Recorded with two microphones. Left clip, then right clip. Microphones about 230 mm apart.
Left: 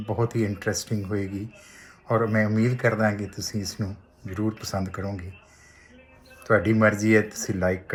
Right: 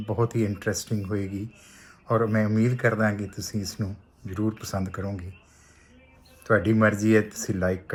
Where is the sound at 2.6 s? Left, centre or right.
Centre.